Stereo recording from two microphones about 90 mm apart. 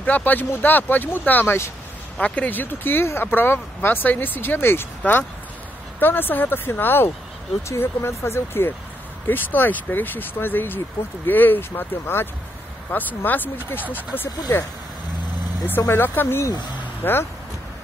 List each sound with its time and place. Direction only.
0.0 s speech: 20° left (ahead or behind)
15.9 s speech: 25° left (ahead or behind)